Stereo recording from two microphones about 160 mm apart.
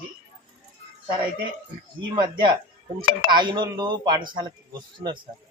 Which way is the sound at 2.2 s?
30° right (ahead or behind).